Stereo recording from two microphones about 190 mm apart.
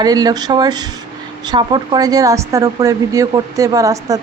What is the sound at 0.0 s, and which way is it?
Speech, 20° right (ahead or behind).